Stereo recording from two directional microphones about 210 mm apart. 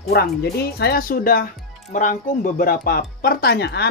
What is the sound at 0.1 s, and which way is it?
Speech, 50° left (ahead or behind).